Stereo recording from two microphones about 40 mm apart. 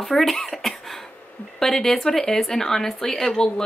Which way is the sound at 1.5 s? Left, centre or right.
Centre.